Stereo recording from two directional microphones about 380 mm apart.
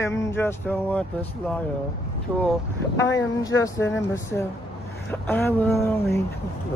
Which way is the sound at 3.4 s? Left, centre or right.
Centre.